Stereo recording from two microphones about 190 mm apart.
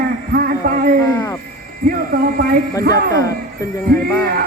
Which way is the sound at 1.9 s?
50° right (ahead or behind).